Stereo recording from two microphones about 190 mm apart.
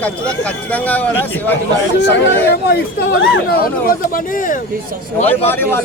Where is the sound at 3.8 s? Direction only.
50° left (ahead or behind).